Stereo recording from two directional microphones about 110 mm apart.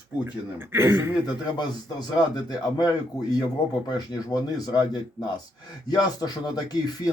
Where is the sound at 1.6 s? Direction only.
35° left (ahead or behind).